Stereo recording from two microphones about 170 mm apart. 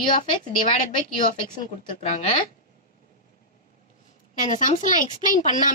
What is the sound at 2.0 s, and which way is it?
Speech, 40° left (ahead or behind).